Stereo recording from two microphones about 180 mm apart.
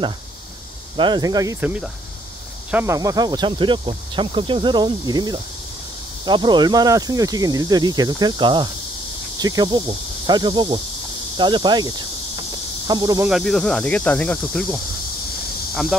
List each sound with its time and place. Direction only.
0.9 s speech: 25° right (ahead or behind)
12.4 s cricket: 20° right (ahead or behind)
13.3 s speech: centre (ahead or behind)